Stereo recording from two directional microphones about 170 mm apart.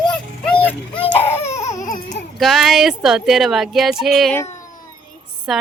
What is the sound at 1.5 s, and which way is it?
Baby cry, 20° left (ahead or behind).